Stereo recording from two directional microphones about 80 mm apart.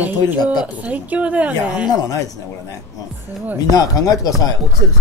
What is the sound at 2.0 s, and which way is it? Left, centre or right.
Chopping, left.